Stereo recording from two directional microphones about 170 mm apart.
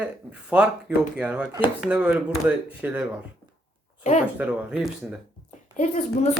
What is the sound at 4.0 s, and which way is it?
Speech, 40° left (ahead or behind).